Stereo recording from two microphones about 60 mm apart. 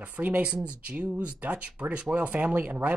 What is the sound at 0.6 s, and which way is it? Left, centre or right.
Speech, centre.